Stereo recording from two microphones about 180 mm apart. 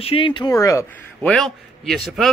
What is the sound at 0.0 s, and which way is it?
Speech, 30° left (ahead or behind).